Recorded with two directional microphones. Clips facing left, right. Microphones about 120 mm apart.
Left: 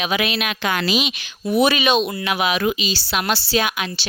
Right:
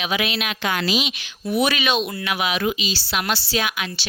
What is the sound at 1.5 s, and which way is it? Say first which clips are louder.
Speech: left 4 dB; 25° left (ahead or behind).